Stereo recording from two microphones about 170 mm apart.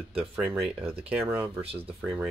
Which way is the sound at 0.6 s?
35° right (ahead or behind).